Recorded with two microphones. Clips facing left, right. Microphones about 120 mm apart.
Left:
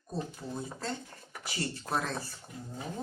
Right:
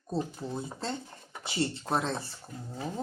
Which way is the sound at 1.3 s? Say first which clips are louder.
Right 5 dB; 25° right (ahead or behind).